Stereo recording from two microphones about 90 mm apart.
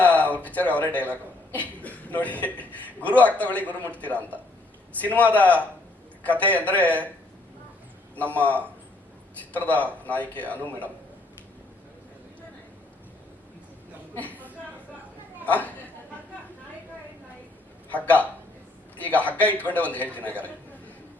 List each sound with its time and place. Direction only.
0.0 s speech: 15° left (ahead or behind)
4.9 s speech: 20° left (ahead or behind)
8.1 s speech: 15° left (ahead or behind)
14.2 s speech: 20° left (ahead or behind)
15.4 s a woman's voice: 15° left (ahead or behind)
17.8 s speech: 20° left (ahead or behind)